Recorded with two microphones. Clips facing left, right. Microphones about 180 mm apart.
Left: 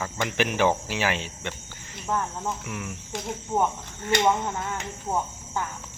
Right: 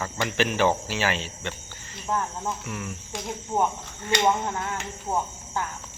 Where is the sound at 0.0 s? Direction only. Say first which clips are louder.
Right 1 dB; 15° left (ahead or behind).